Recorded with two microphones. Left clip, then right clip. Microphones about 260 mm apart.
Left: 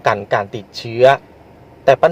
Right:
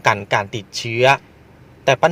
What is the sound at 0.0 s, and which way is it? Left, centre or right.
A man's voice, right.